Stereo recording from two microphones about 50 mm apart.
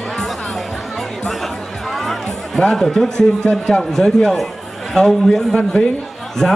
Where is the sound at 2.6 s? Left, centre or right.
Centre.